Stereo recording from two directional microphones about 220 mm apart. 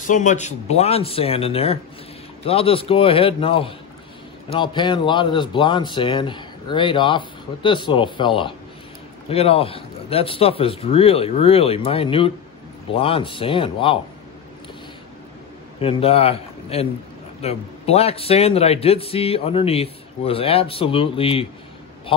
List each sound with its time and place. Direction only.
0.0 s a man's voice: 35° left (ahead or behind)
15.8 s a man's voice: 25° left (ahead or behind)